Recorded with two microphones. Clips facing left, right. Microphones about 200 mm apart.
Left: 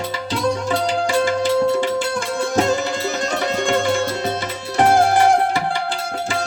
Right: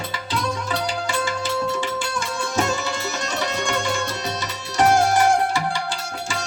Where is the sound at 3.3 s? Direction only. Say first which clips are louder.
Left 5 dB; 55° left (ahead or behind).